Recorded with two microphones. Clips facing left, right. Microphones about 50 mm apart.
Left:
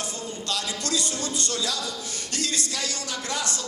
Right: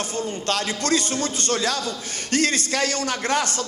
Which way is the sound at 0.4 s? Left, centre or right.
Right.